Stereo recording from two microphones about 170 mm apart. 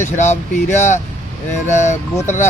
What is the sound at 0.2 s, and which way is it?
Speech, 45° left (ahead or behind).